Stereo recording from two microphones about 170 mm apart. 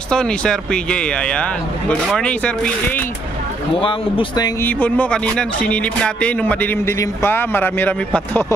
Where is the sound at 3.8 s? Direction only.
30° left (ahead or behind).